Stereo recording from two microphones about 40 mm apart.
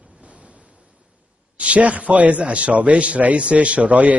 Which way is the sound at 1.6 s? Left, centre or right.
Right.